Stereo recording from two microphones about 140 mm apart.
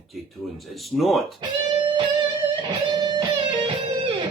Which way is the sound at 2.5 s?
30° right (ahead or behind).